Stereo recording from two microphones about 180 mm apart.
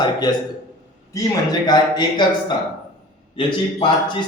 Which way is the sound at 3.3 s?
25° left (ahead or behind).